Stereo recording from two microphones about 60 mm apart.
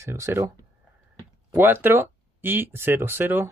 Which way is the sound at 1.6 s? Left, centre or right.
Right.